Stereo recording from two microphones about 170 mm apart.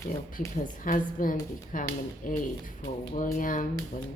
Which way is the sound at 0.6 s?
50° left (ahead or behind).